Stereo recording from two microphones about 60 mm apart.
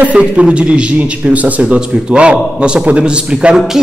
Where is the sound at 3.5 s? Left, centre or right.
Centre.